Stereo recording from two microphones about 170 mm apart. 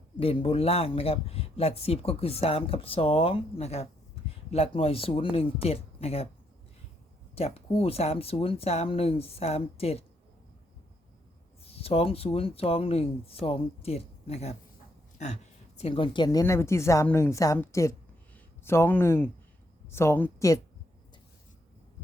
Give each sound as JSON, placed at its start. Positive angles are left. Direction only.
{"t": 0.2, "sound": "speech", "side_deg": 35}
{"t": 7.3, "sound": "speech", "side_deg": 35}
{"t": 11.6, "sound": "speech", "side_deg": 35}
{"t": 15.8, "sound": "a woman's voice", "side_deg": 30}